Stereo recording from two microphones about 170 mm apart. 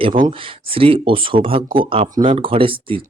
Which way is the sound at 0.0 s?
30° right (ahead or behind).